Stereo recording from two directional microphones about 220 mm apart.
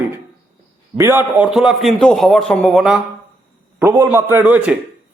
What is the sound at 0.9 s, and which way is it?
A man's voice, 10° right (ahead or behind).